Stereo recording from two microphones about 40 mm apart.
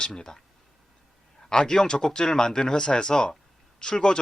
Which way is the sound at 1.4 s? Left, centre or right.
Centre.